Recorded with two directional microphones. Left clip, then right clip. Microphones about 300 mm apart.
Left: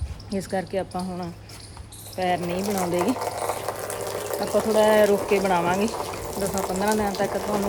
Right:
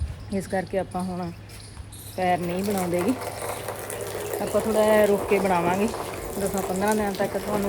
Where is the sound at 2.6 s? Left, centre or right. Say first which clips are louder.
Left 1 dB; centre.